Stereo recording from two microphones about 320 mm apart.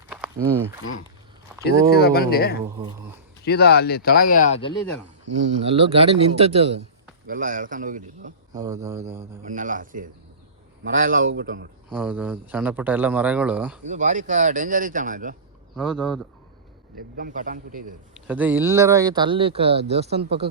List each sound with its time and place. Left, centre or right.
1.6 s speech: left
2.6 s speech: centre
3.4 s speech: left
5.2 s speech: right
5.6 s speech: centre
8.5 s speech: centre
9.4 s a man's voice: right
11.9 s a man's voice: centre
13.8 s speech: right
15.7 s a man's voice: centre
17.2 s speech: right
18.1 s speech: centre